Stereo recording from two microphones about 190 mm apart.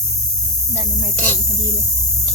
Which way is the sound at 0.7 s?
20° right (ahead or behind).